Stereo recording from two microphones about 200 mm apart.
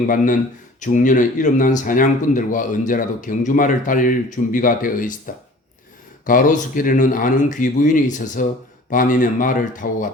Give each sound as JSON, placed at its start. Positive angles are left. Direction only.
{"t": 0.8, "sound": "speech", "side_deg": 40}